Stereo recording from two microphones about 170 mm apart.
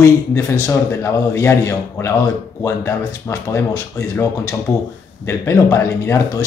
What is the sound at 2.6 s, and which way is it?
Speech, 15° left (ahead or behind).